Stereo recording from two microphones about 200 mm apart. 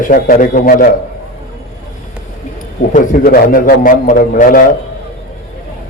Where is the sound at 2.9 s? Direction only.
40° left (ahead or behind).